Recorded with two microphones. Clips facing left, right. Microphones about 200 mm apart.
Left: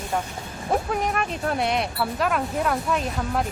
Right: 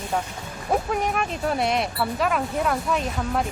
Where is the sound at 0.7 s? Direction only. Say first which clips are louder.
Right 1 dB; centre (ahead or behind).